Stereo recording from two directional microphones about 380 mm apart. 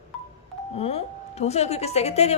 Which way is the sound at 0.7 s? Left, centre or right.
Centre.